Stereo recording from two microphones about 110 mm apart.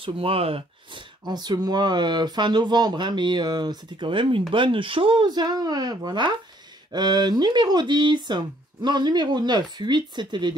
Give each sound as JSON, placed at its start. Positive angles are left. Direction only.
{"t": 0.0, "sound": "speech", "side_deg": -60}
{"t": 1.2, "sound": "speech", "side_deg": -40}